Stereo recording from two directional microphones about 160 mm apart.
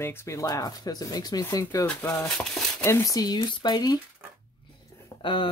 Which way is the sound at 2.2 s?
5° left (ahead or behind).